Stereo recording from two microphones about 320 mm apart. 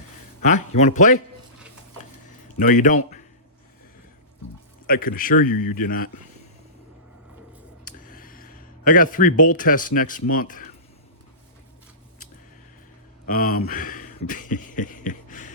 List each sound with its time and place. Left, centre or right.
0.4 s speech: left
2.6 s speech: left
4.9 s speech: left
7.9 s speech: left
13.2 s speech: left